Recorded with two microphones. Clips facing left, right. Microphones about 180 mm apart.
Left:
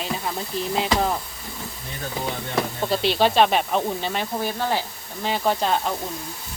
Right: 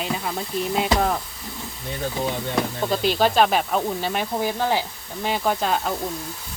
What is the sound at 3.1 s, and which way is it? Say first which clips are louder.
Speech: left 1 dB; 5° right (ahead or behind).